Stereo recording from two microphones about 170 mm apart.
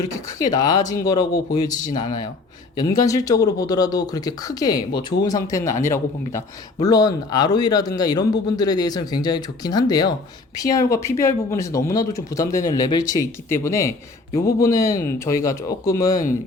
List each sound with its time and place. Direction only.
0.3 s speech: 20° left (ahead or behind)